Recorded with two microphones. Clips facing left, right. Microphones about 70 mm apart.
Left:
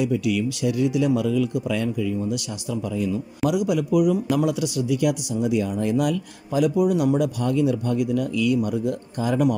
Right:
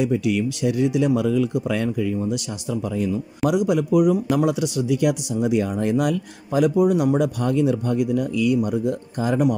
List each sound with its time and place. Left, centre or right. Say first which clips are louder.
0.0 s speech: right 1 dB; right
2.7 s speech: right 2 dB; right